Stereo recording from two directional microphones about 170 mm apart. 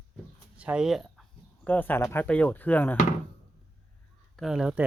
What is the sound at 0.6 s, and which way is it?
Speech, 5° right (ahead or behind).